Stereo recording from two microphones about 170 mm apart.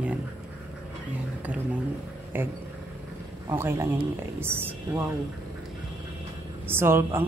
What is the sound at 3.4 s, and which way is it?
A woman's voice, 15° right (ahead or behind).